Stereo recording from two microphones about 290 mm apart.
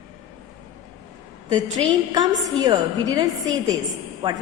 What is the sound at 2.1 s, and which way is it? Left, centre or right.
A woman's voice, centre.